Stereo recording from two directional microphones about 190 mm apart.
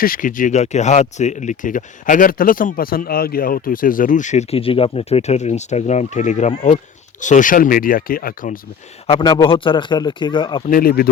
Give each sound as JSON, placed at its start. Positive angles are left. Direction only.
{"t": 0.0, "sound": "speech", "side_deg": 45}
{"t": 9.0, "sound": "a man's voice", "side_deg": 30}
{"t": 10.7, "sound": "speech", "side_deg": 50}